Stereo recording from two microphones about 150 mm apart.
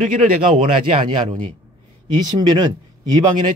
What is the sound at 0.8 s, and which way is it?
Speech, 35° right (ahead or behind).